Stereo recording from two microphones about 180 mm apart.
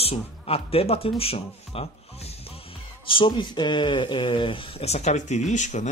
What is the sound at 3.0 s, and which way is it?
Speech, 30° left (ahead or behind).